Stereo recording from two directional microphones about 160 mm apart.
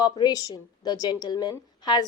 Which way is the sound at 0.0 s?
25° left (ahead or behind).